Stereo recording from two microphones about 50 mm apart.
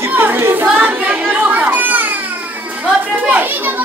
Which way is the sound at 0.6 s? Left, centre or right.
Right.